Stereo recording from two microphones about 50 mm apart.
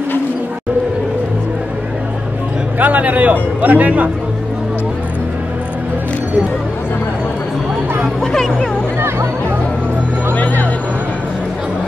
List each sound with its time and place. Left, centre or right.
2.8 s speech: right
10.3 s music: left